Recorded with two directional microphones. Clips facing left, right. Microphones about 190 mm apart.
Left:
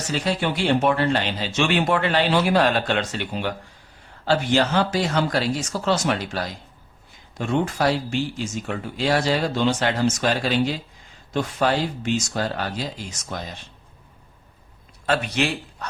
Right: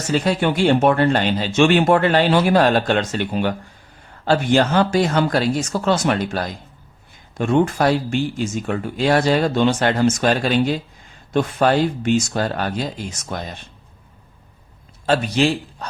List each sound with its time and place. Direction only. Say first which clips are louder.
0.1 s speech: right 6 dB; 50° right (ahead or behind)
15.0 s a man's voice: right 5 dB; 30° right (ahead or behind)